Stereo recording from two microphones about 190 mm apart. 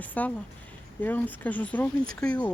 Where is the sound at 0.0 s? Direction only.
10° left (ahead or behind).